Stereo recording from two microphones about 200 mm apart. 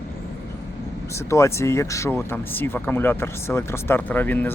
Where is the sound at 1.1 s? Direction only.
15° left (ahead or behind).